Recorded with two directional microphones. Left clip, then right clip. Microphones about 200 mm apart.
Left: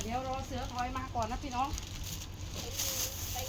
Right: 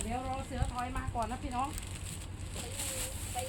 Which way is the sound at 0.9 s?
Centre (ahead or behind).